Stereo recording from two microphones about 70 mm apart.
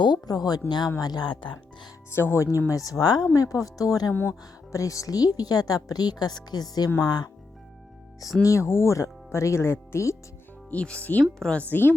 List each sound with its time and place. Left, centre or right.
0.0 s a woman's voice: left
2.0 s speech: left
2.6 s a woman's voice: left
3.0 s a woman's voice: left
3.3 s a woman's voice: left
4.1 s speech: left
4.7 s a woman's voice: left
7.0 s speech: left
8.4 s speech: left
10.7 s speech: centre
11.2 s speech: centre
11.5 s speech: left